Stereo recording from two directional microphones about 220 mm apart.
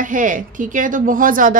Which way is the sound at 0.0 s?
35° right (ahead or behind).